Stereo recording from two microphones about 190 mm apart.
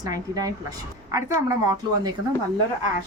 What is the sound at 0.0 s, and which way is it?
A woman's voice, 20° right (ahead or behind).